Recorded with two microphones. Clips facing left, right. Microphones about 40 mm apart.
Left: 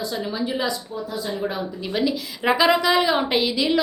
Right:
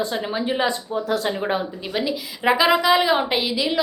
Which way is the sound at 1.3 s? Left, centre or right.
Right.